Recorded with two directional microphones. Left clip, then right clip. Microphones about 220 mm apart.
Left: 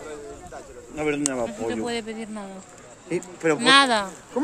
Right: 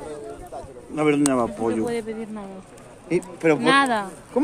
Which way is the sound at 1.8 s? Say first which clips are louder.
Right 2 dB; 40° left (ahead or behind).